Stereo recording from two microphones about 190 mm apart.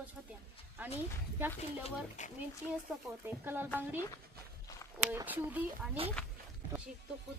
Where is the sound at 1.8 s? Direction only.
40° left (ahead or behind).